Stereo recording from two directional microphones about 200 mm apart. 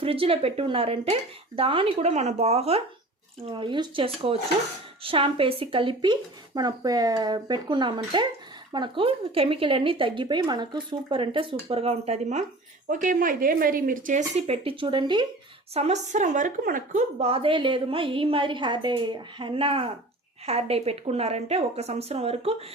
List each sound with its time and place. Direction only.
0.0 s a woman's voice: 30° right (ahead or behind)